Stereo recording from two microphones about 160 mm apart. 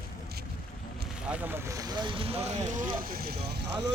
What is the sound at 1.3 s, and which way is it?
Speech, 10° right (ahead or behind).